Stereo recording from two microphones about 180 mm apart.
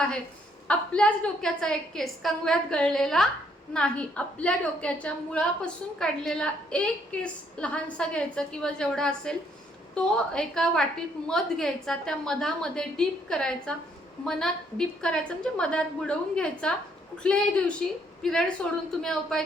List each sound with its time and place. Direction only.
0.7 s a woman's voice: 5° left (ahead or behind)